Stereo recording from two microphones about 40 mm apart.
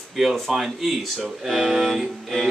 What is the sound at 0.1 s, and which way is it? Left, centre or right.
Speech, centre.